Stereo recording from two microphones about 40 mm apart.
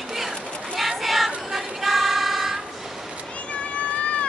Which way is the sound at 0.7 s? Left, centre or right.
Centre.